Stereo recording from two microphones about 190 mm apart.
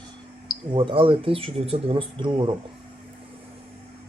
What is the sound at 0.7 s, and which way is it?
Speech, 25° right (ahead or behind).